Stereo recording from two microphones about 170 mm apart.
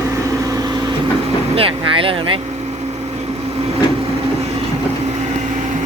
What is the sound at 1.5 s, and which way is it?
Speech, 30° right (ahead or behind).